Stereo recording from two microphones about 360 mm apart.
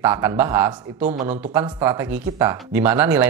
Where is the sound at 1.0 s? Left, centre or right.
Centre.